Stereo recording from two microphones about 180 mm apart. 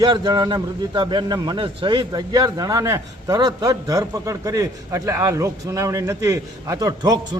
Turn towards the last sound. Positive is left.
turn(degrees=-20)  # may be behind; listen again after turning